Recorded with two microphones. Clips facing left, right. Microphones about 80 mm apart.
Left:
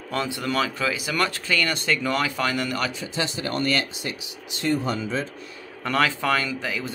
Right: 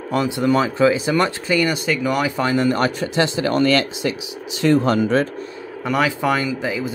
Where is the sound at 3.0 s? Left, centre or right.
Right.